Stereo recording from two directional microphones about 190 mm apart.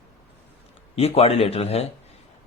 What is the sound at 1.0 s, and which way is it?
Speech, 30° left (ahead or behind).